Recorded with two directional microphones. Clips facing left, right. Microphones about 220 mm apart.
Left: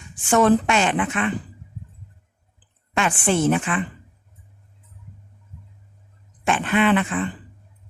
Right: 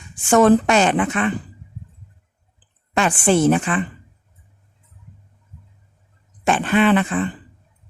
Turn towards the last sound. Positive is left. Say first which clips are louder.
# right 3 dB
turn(degrees=-35)  # may be behind; listen again after turning